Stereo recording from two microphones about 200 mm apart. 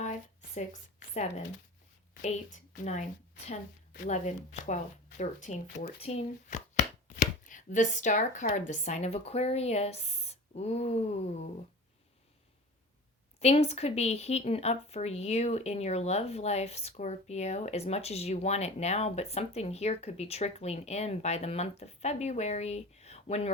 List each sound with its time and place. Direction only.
0.0 s a sound: 35° left (ahead or behind)
2.2 s speech: 35° left (ahead or behind)
13.4 s speech: 30° left (ahead or behind)